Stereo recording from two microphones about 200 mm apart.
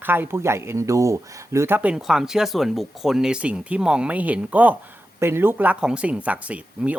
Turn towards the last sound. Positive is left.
turn(degrees=-5)  # may be behind; listen again after turning